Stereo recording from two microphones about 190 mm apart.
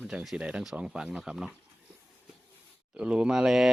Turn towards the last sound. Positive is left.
turn(degrees=0)  # may be behind; listen again after turning